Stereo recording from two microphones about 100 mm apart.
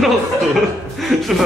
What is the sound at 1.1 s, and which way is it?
Speech, centre (ahead or behind).